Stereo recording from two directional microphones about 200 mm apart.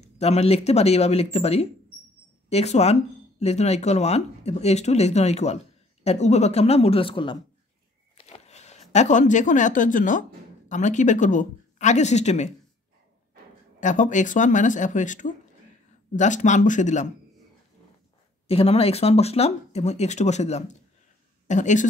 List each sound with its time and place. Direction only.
0.0 s speech: 30° left (ahead or behind)
8.2 s a sound: 35° left (ahead or behind)
8.9 s speech: 35° left (ahead or behind)
13.7 s speech: 40° left (ahead or behind)
18.5 s speech: 30° left (ahead or behind)